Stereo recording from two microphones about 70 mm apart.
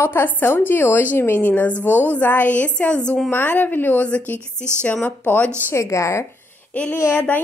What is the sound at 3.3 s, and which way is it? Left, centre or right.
Speech, left.